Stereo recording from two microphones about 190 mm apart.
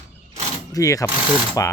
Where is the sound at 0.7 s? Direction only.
15° left (ahead or behind).